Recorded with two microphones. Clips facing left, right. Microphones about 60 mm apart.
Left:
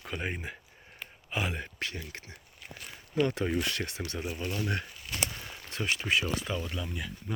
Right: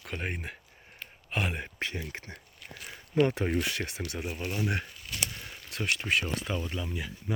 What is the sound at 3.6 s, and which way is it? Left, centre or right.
Speech, centre.